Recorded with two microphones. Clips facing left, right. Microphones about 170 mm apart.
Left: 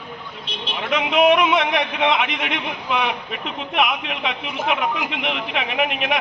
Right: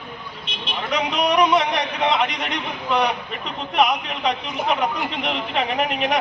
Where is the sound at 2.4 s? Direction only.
40° right (ahead or behind).